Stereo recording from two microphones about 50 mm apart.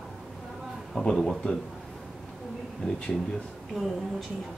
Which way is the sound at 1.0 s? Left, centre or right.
Centre.